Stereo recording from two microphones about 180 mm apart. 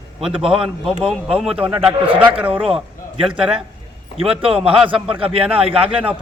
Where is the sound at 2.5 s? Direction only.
30° right (ahead or behind).